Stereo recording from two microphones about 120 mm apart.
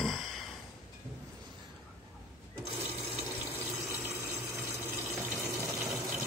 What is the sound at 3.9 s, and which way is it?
Water, 25° right (ahead or behind).